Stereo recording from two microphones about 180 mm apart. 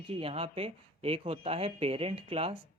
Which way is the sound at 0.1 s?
30° right (ahead or behind).